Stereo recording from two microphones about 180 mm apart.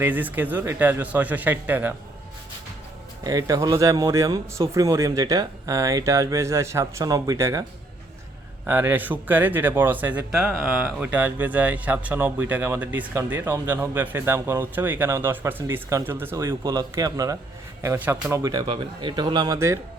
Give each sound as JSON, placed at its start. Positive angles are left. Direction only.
{"t": 0.0, "sound": "speech", "side_deg": -10}
{"t": 3.2, "sound": "speech", "side_deg": -20}
{"t": 8.6, "sound": "speech", "side_deg": -10}